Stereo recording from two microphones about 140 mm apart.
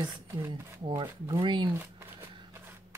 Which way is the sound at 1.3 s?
35° right (ahead or behind).